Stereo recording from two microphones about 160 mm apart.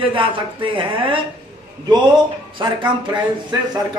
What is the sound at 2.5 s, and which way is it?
Speech, 30° right (ahead or behind).